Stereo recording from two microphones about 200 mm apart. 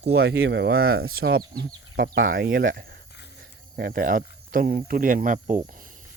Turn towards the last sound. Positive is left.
turn(degrees=-45)  # may be behind; listen again after turning